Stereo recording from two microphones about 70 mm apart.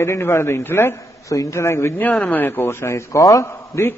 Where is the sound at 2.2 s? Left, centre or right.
Left.